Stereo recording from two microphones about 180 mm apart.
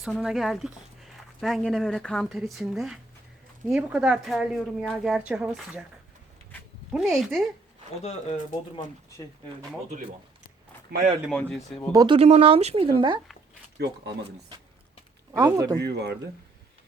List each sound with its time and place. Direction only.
0.0 s speech: centre (ahead or behind)
6.9 s speech: centre (ahead or behind)
10.9 s speech: 60° right (ahead or behind)
11.3 s speech: 5° left (ahead or behind)
11.9 s speech: 25° right (ahead or behind)
13.7 s speech: 70° right (ahead or behind)
15.3 s speech: 15° right (ahead or behind)
15.8 s speech: 70° right (ahead or behind)